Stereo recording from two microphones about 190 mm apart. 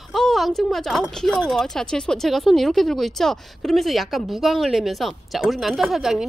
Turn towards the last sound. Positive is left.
turn(degrees=0)  # may be behind; listen again after turning